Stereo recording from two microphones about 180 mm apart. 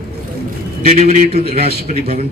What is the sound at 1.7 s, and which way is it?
Speech, 55° right (ahead or behind).